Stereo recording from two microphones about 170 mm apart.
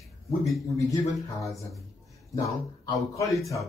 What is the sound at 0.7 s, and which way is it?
Speech, 20° left (ahead or behind).